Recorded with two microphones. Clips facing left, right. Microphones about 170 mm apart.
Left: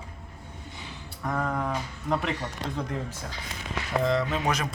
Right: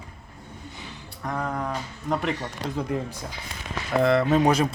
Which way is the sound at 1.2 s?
Centre (ahead or behind).